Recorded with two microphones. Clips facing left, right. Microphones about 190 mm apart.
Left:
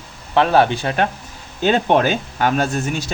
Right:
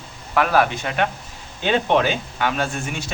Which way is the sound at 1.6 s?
45° left (ahead or behind).